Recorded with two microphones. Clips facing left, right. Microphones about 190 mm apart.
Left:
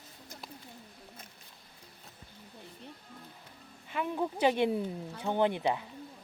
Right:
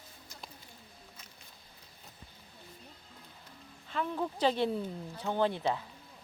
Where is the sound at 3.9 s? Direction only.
15° left (ahead or behind).